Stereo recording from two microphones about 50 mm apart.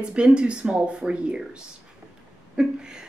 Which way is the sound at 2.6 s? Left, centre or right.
Centre.